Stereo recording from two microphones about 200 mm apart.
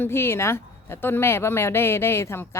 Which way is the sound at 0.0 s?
10° left (ahead or behind).